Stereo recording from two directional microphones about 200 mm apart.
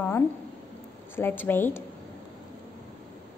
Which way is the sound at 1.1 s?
10° left (ahead or behind).